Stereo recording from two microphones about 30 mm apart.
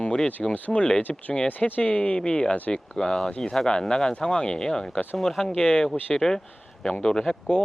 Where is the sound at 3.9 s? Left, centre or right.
Left; by 5.5 s centre.